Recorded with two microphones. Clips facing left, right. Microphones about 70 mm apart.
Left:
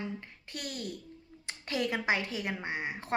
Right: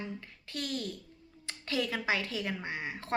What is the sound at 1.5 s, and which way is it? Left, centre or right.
Speech, left.